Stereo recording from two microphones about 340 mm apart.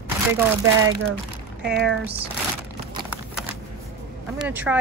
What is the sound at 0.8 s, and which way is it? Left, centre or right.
Speech, right.